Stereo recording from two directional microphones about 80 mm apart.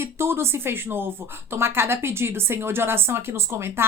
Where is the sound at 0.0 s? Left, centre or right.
Right.